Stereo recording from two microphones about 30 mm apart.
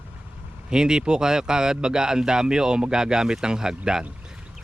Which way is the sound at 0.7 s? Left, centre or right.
Right.